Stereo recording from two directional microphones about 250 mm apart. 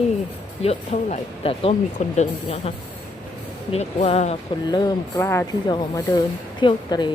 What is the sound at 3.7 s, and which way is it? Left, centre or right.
Speech, left.